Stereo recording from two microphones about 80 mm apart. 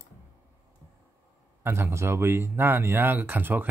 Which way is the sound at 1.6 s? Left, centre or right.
Right.